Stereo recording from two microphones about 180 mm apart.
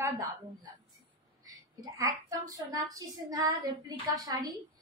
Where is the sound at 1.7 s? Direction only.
20° right (ahead or behind).